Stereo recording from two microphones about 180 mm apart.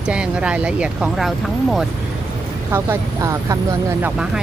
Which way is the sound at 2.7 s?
15° right (ahead or behind).